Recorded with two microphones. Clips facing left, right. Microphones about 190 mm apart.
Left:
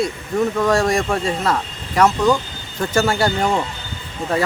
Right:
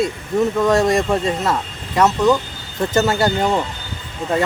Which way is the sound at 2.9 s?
20° right (ahead or behind).